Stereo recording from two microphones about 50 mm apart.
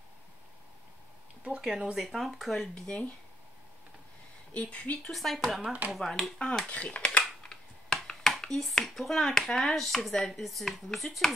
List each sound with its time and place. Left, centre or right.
1.6 s speech: centre
2.0 s speech: centre
2.7 s speech: centre
4.6 s a woman's voice: left
5.0 s speech: centre
5.7 s speech: right
5.9 s speech: centre
6.7 s a woman's voice: left
7.4 s computer keyboard: centre
8.4 s speech: centre